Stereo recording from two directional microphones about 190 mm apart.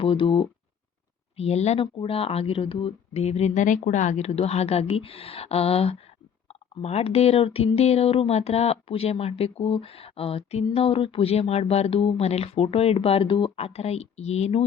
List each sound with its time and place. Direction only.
0.0 s speech: 30° left (ahead or behind)